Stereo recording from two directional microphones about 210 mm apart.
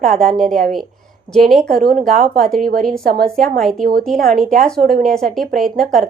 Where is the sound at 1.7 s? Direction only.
45° right (ahead or behind).